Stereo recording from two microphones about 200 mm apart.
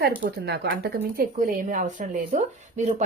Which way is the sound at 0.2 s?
55° right (ahead or behind).